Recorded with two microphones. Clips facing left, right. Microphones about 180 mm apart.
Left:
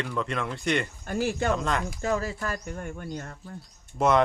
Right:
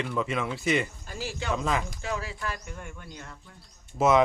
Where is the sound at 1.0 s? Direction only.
55° left (ahead or behind).